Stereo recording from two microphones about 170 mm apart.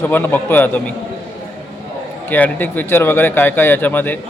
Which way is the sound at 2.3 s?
10° left (ahead or behind).